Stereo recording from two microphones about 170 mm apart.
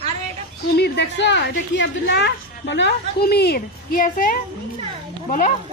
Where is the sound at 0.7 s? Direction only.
80° left; by 4.4 s 55° left (ahead or behind).